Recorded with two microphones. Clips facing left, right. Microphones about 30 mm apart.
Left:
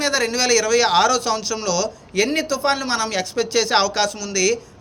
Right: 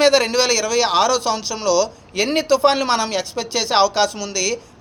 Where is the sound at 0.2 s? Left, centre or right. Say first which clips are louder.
Right 3 dB; right.